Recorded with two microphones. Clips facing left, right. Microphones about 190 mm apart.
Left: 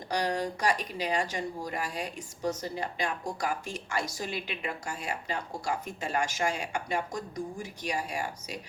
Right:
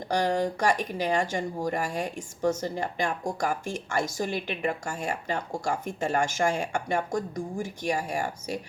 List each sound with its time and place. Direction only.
0.1 s a woman's voice: 45° right (ahead or behind)